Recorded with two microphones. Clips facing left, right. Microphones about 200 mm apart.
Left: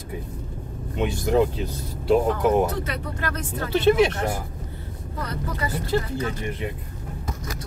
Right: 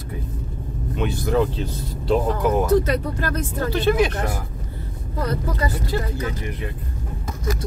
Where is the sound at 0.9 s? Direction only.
20° left (ahead or behind).